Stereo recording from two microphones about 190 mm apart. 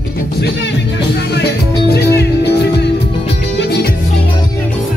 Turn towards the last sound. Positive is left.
turn(degrees=60)  # may be behind; listen again after turning